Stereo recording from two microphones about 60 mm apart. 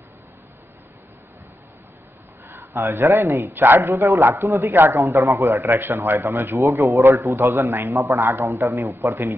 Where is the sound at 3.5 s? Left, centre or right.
Right.